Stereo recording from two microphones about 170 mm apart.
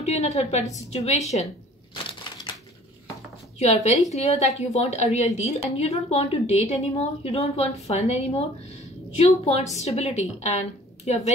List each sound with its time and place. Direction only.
0.0 s a woman's voice: 40° left (ahead or behind)
2.3 s crumpling: 30° left (ahead or behind)
3.5 s a woman's voice: 40° left (ahead or behind)